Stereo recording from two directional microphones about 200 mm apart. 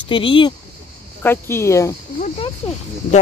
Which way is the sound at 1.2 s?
10° left (ahead or behind).